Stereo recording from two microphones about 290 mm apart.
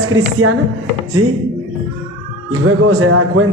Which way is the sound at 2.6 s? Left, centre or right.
Right.